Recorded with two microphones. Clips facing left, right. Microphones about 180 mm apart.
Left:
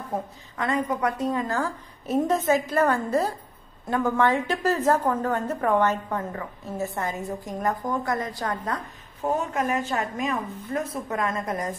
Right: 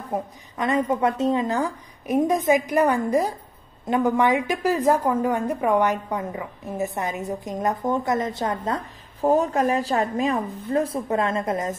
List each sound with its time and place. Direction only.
0.1 s a woman's voice: 20° right (ahead or behind)